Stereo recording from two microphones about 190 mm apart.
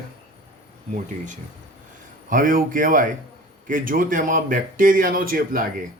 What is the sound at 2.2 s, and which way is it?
Speech, 45° right (ahead or behind).